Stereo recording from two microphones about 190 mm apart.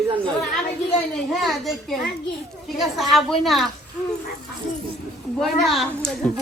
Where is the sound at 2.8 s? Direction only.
Centre (ahead or behind).